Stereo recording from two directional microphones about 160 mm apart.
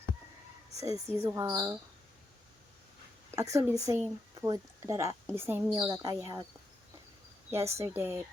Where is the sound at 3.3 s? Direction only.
20° right (ahead or behind).